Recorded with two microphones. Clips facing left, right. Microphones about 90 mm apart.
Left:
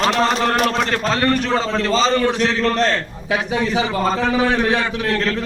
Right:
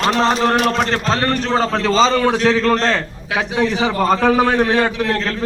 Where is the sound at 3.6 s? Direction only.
90° right.